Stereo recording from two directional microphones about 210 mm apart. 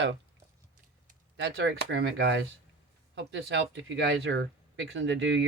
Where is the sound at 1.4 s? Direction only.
55° right (ahead or behind).